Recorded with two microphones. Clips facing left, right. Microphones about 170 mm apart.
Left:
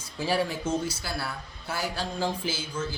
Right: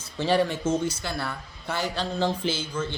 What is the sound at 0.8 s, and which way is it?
A man's voice, 10° left (ahead or behind).